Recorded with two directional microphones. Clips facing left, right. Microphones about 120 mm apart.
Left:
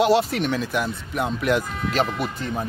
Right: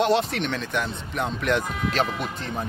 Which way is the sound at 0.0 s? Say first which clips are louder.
Left 3 dB; 5° left (ahead or behind).